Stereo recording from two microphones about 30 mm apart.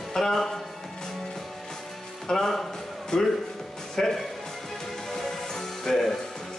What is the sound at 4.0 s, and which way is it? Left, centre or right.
Music, centre.